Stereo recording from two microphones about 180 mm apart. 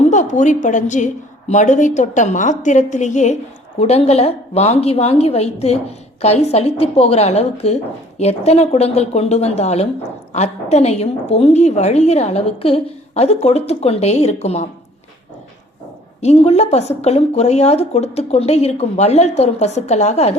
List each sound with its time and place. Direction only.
0.0 s a woman's voice: 40° left (ahead or behind)
16.2 s a woman's voice: 35° left (ahead or behind)